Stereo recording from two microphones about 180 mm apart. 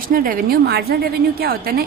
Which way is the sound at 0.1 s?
55° right (ahead or behind).